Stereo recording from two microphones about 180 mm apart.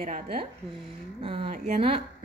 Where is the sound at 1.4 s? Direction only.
45° right (ahead or behind).